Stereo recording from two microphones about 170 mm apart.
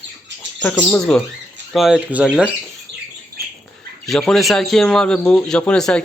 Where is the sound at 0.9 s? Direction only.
5° left (ahead or behind).